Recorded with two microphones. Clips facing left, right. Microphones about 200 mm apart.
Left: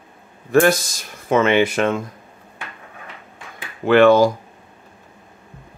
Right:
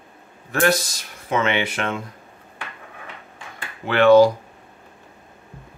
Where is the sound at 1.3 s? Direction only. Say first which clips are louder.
Left 6 dB; 45° left (ahead or behind).